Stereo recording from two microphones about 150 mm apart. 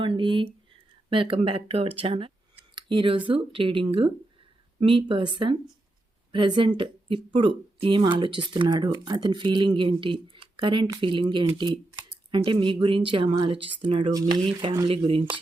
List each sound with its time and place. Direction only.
0.0 s speech: 35° right (ahead or behind)
2.7 s a sound: 35° right (ahead or behind)
3.2 s speech: 35° right (ahead or behind)
14.8 s speech: 40° right (ahead or behind)